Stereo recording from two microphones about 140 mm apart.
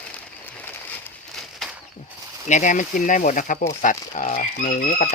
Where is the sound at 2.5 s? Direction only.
65° left (ahead or behind).